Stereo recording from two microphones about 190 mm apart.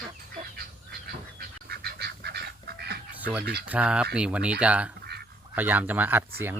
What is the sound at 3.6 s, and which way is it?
Speech, 5° right (ahead or behind).